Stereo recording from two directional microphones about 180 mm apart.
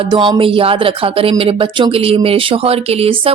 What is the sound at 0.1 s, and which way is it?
A woman's voice, 25° right (ahead or behind).